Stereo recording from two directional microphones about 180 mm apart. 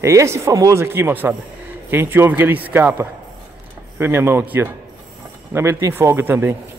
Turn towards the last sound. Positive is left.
turn(degrees=-10)  # may be behind; listen again after turning